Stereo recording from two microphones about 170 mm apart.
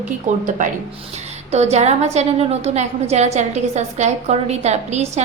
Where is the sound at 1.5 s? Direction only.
40° right (ahead or behind).